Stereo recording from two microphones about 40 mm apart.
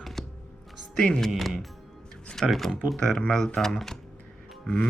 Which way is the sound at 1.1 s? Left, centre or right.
Centre.